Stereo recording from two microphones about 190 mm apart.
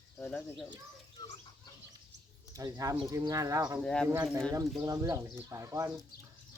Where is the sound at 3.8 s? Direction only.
5° left (ahead or behind).